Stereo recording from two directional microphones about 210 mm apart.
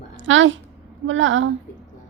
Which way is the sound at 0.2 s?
65° right (ahead or behind).